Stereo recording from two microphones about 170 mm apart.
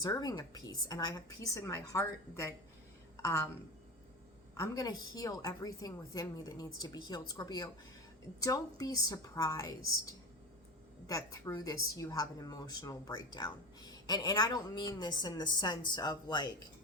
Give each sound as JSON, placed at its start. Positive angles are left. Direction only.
{"t": 0.0, "sound": "a woman's voice", "side_deg": 20}
{"t": 4.5, "sound": "a woman's voice", "side_deg": 20}